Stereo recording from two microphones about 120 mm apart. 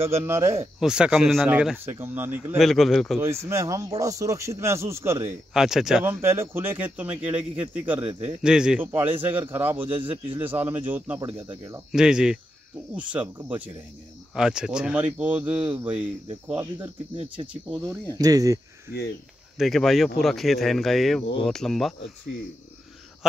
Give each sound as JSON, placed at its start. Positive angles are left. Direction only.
{"t": 0.2, "sound": "speech", "side_deg": -20}
{"t": 0.7, "sound": "speech", "side_deg": -5}
{"t": 1.9, "sound": "speech", "side_deg": -20}
{"t": 2.5, "sound": "speech", "side_deg": 0}
{"t": 3.2, "sound": "speech", "side_deg": -25}
{"t": 5.5, "sound": "speech", "side_deg": -5}
{"t": 6.0, "sound": "speech", "side_deg": -20}
{"t": 8.4, "sound": "speech", "side_deg": -5}
{"t": 18.1, "sound": "speech", "side_deg": -30}
{"t": 19.5, "sound": "speech", "side_deg": 0}